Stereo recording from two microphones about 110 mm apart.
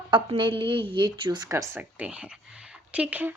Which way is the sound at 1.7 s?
15° right (ahead or behind).